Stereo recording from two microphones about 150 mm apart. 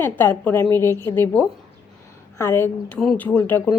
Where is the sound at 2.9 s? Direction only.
5° left (ahead or behind).